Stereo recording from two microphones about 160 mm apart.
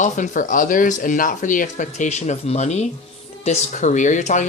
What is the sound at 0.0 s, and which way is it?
Speech, 55° left (ahead or behind).